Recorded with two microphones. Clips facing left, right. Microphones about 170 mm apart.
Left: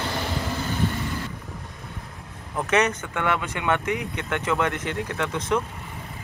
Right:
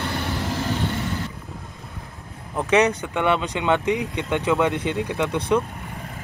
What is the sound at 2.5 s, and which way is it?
Speech, 15° right (ahead or behind).